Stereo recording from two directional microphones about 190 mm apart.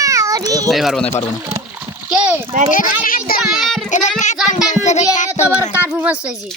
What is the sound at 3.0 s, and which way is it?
Speech, 50° left (ahead or behind).